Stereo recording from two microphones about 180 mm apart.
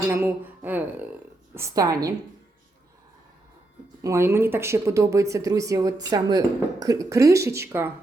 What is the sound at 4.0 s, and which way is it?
A woman's voice, 15° right (ahead or behind).